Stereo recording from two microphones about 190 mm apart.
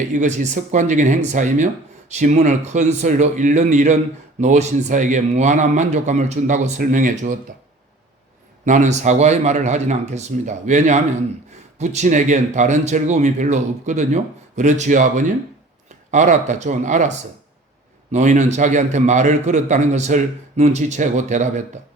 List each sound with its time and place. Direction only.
0.1 s speech: 40° right (ahead or behind)
8.6 s speech: 40° right (ahead or behind)
18.1 s speech: 40° right (ahead or behind)